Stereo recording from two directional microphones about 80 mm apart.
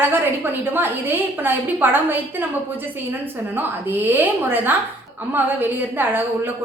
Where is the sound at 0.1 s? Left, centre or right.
Right.